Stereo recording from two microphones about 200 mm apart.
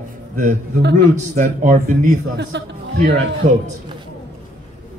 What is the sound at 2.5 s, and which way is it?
Speech, 60° right (ahead or behind).